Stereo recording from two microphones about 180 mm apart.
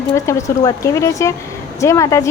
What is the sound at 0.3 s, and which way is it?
Speech, 20° left (ahead or behind).